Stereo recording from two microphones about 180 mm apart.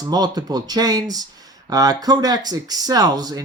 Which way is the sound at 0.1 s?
20° right (ahead or behind).